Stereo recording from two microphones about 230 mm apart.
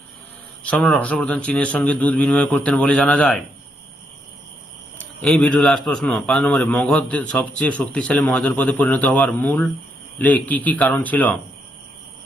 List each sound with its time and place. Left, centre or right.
0.6 s a man's voice: centre
4.9 s a man's voice: centre